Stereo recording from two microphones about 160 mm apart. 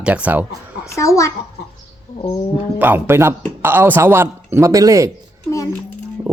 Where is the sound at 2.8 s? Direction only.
15° right (ahead or behind).